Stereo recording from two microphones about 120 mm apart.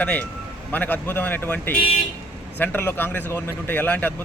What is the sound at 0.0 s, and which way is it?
Speech, 10° left (ahead or behind).